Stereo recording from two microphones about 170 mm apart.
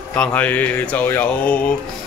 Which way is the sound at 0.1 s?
10° left (ahead or behind).